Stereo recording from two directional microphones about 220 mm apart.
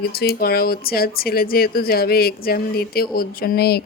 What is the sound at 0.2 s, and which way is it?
Speech, 45° left (ahead or behind).